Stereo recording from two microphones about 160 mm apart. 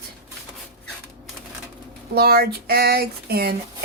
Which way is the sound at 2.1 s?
75° right (ahead or behind).